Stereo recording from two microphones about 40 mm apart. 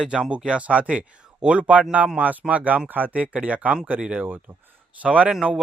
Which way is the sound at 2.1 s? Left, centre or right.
Right.